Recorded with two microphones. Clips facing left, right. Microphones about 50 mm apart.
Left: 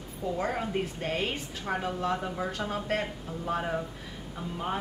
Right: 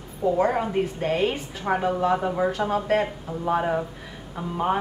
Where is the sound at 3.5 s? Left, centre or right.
Centre.